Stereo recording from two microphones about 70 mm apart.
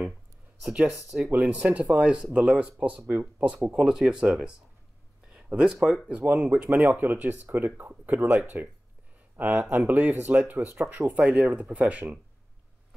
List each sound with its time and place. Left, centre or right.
0.7 s speech: centre
1.3 s speech: right